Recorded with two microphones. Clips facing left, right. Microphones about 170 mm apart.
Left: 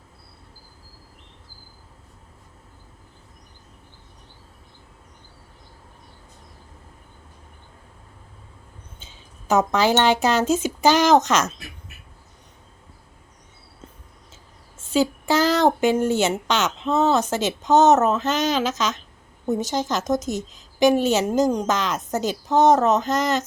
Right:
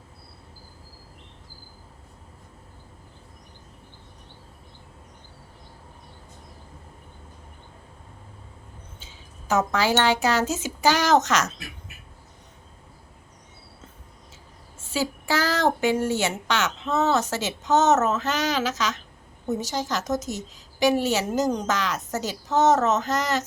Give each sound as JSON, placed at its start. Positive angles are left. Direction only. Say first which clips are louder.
{"t": 9.5, "sound": "a woman's voice", "louder": "left 4 dB", "side_deg": 20}
{"t": 14.9, "sound": "a woman's voice", "louder": "left 6 dB", "side_deg": 20}